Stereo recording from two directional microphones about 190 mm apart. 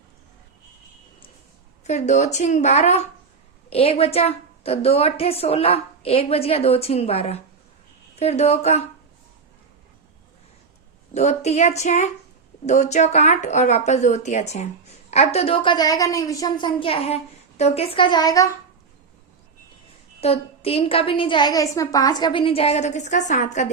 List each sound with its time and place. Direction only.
1.8 s a woman's voice: 35° left (ahead or behind)
11.1 s a woman's voice: 35° left (ahead or behind); by 18.5 s 20° left (ahead or behind)
20.2 s a woman's voice: 30° left (ahead or behind)